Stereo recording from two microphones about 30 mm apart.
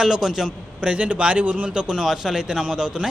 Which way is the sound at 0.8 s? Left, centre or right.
Right.